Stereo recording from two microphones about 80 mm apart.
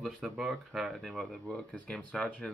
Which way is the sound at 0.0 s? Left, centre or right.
Centre.